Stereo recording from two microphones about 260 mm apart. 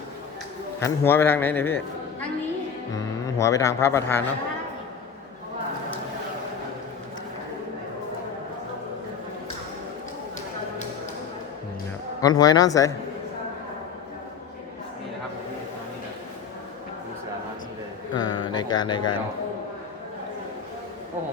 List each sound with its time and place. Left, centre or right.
0.8 s a man's voice: centre
2.9 s speech: centre
12.2 s a man's voice: centre
18.1 s a sound: centre